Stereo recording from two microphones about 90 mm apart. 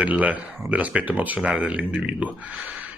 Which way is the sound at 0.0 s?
15° right (ahead or behind).